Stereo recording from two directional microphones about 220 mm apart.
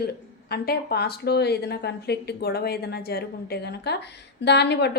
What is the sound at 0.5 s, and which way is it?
A woman's voice, 45° left (ahead or behind).